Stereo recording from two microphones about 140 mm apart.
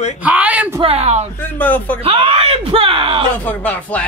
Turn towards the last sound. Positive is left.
turn(degrees=10)  # may be behind; listen again after turning